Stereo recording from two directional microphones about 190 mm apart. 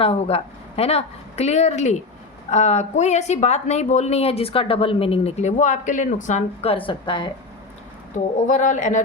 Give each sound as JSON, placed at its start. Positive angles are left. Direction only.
{"t": 0.0, "sound": "speech", "side_deg": 30}
{"t": 8.1, "sound": "speech", "side_deg": 40}